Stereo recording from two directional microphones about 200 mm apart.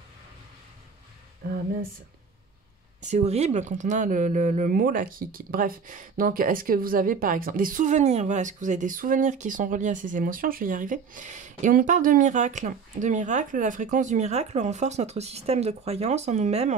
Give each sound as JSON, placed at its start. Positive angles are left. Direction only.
{"t": 3.0, "sound": "speech", "side_deg": -35}